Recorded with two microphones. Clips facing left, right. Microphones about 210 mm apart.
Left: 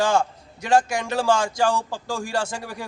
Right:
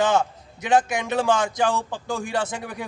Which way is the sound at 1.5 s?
20° right (ahead or behind).